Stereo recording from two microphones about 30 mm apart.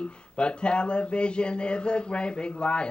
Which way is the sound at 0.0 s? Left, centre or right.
Left.